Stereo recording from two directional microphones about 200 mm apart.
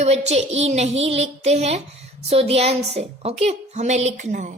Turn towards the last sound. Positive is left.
turn(degrees=-40)  # may be behind; listen again after turning